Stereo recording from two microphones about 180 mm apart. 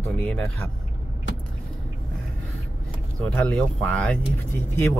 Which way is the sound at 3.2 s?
5° left (ahead or behind).